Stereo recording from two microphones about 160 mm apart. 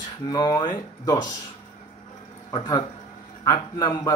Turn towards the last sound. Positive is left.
turn(degrees=25)  # may be behind; listen again after turning